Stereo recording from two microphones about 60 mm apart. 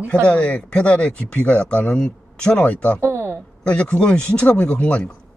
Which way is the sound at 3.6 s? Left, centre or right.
Centre.